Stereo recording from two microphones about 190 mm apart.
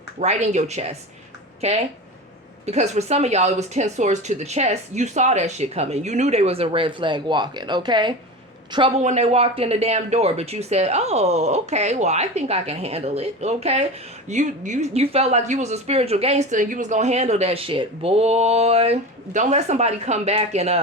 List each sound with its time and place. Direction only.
0.2 s speech: 35° right (ahead or behind)
2.6 s a man's voice: 35° right (ahead or behind)